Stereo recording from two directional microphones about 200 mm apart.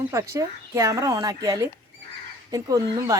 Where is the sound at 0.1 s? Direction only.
15° right (ahead or behind).